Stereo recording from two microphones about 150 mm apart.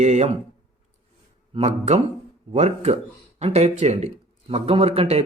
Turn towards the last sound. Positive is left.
turn(degrees=-45)  # may be behind; listen again after turning